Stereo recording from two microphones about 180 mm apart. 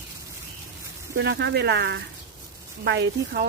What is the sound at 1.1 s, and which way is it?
Speech, 70° right (ahead or behind).